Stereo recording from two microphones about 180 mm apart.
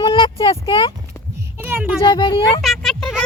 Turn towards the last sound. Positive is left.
turn(degrees=5)  # may be behind; listen again after turning